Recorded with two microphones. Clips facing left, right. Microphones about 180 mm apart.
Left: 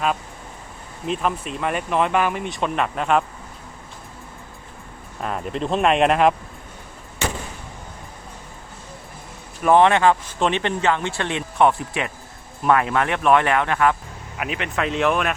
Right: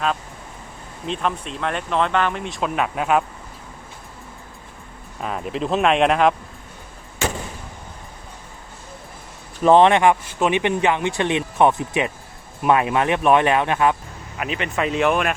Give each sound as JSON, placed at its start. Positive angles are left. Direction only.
{"t": 1.0, "sound": "speech", "side_deg": 5}
{"t": 5.2, "sound": "speech", "side_deg": 0}
{"t": 9.6, "sound": "speech", "side_deg": -20}
{"t": 14.3, "sound": "speech", "side_deg": 5}